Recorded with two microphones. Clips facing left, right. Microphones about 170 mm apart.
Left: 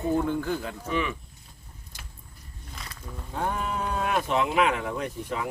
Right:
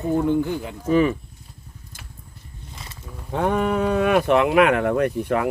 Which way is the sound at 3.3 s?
80° right.